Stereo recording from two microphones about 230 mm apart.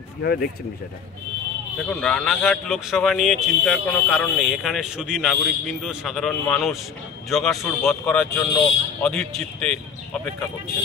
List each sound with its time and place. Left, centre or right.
0.2 s speech: left
1.8 s a man's voice: centre